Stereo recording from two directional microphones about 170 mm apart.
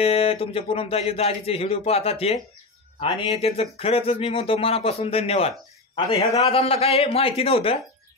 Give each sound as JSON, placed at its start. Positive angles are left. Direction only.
{"t": 0.0, "sound": "a man's voice", "side_deg": 35}